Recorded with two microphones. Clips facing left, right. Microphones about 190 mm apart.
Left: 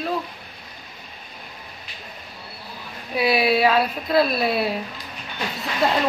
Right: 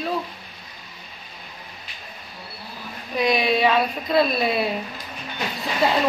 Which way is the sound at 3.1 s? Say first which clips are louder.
Left 1 dB; 5° left (ahead or behind).